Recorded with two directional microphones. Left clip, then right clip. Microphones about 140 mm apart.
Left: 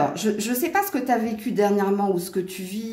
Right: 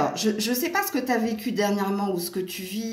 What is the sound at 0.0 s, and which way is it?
A woman's voice, 35° left (ahead or behind).